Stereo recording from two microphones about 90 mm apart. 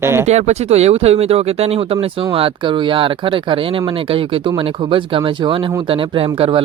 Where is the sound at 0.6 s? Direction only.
90° right; by 5.7 s 70° right (ahead or behind).